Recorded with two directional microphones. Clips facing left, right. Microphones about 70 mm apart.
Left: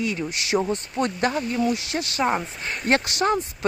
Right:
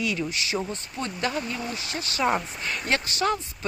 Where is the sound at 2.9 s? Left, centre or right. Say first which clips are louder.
Left 7 dB; left.